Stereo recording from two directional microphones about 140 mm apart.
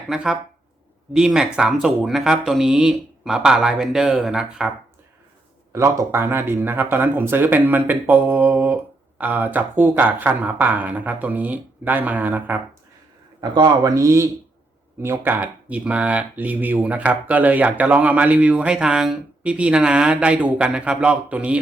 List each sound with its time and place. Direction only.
0.1 s speech: 5° right (ahead or behind)
5.7 s speech: 20° right (ahead or behind)
13.4 s speech: 30° right (ahead or behind); by 21.6 s 10° right (ahead or behind)